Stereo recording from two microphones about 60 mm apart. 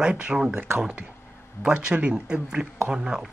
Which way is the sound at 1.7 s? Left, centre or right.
Centre.